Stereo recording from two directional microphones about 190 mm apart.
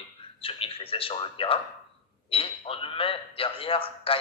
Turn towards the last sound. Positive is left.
turn(degrees=30)  # may be behind; listen again after turning